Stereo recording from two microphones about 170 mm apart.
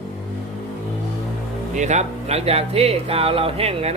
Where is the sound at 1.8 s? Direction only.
40° right (ahead or behind).